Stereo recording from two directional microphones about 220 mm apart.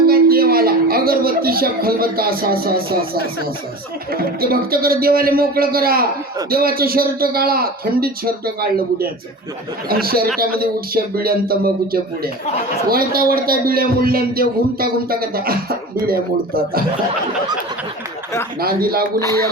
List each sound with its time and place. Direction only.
0.0 s a sound: 40° right (ahead or behind)
4.1 s a man's voice: 45° right (ahead or behind)
18.6 s a man's voice: 45° right (ahead or behind)
19.2 s speech: 15° left (ahead or behind)